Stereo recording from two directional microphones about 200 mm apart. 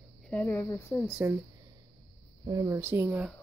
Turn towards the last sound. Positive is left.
turn(degrees=-10)  # may be behind; listen again after turning